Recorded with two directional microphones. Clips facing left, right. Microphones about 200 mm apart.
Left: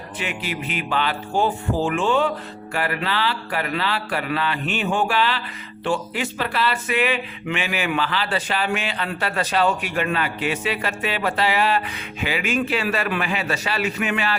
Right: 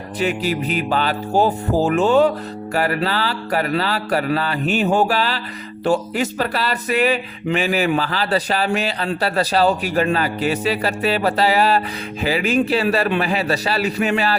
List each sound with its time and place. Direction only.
0.2 s speech: 40° right (ahead or behind)